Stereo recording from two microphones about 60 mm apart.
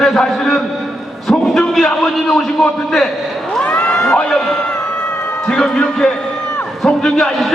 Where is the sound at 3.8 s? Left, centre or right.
Centre.